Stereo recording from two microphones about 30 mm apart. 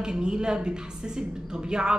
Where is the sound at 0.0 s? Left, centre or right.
Right.